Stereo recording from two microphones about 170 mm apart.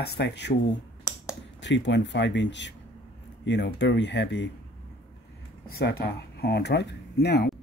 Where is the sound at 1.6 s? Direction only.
90° left.